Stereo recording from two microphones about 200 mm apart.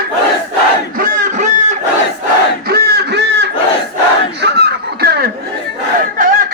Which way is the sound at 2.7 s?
55° right (ahead or behind).